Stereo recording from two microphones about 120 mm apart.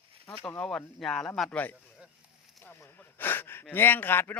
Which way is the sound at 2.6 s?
20° left (ahead or behind).